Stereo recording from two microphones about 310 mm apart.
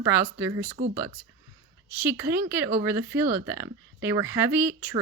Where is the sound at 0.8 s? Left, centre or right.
Right.